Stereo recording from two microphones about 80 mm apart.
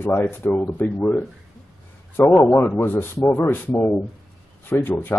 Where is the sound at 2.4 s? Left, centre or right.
Left.